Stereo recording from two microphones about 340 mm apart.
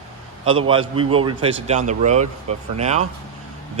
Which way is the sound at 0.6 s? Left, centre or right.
Centre.